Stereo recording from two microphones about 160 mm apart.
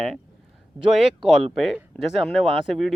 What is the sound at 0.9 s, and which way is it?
Speech, centre (ahead or behind).